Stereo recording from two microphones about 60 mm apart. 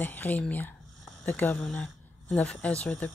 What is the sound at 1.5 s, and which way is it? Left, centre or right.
Speech, centre.